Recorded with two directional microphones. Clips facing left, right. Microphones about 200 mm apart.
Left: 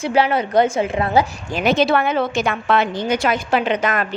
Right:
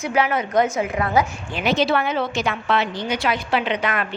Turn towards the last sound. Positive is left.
turn(degrees=45)  # may be behind; listen again after turning